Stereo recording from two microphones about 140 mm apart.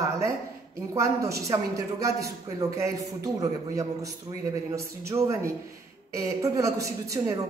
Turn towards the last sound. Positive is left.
turn(degrees=-20)  # may be behind; listen again after turning